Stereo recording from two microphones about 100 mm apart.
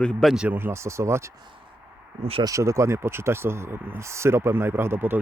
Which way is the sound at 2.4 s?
30° right (ahead or behind).